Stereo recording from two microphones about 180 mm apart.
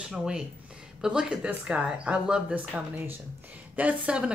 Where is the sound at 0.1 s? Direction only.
5° right (ahead or behind).